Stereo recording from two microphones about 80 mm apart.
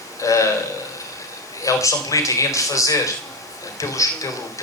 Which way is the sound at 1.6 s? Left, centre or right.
Left.